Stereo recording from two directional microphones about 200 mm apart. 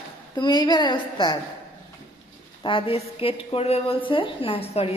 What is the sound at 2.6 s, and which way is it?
A woman's voice, 25° left (ahead or behind).